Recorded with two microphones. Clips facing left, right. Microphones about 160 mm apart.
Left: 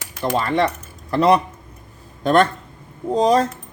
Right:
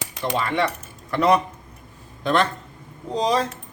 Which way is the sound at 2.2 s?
50° left (ahead or behind).